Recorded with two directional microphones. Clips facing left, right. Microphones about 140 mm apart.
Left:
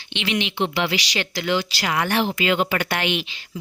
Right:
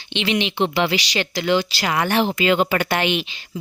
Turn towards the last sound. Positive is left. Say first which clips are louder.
# right 3 dB
turn(degrees=-35)  # may be behind; listen again after turning